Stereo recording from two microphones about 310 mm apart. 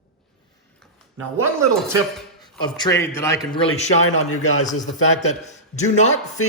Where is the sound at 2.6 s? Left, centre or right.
Centre.